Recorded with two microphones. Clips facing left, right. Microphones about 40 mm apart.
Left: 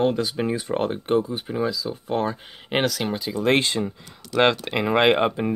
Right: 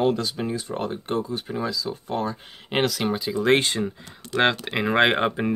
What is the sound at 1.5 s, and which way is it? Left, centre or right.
Speech, centre.